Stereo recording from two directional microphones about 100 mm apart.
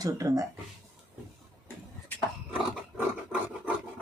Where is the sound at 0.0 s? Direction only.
35° right (ahead or behind).